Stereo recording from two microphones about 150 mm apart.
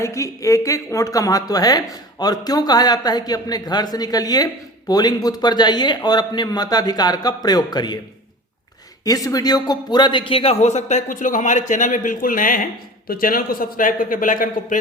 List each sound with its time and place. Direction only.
0.0 s speech: 20° left (ahead or behind)
9.0 s a man's voice: 25° left (ahead or behind); by 14.8 s 60° left (ahead or behind)